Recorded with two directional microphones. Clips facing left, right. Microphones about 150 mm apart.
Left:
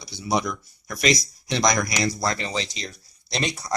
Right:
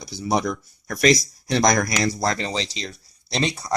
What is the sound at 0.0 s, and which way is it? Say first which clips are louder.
Speech: right 2 dB; 40° right (ahead or behind).